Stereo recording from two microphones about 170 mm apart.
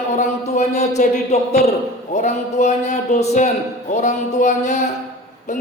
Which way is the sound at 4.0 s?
45° left (ahead or behind).